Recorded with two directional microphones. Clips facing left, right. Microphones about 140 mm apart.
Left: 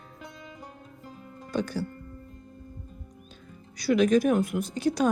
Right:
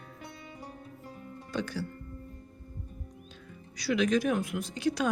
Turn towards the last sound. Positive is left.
turn(degrees=40)  # may be behind; listen again after turning